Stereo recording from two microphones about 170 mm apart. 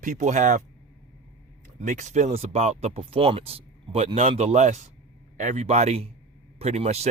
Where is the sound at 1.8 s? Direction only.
45° right (ahead or behind).